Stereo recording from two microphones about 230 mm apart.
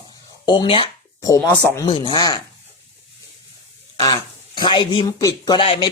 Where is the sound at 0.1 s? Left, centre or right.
Centre.